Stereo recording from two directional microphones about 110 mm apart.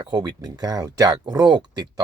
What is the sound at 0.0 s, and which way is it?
Speech, 40° right (ahead or behind).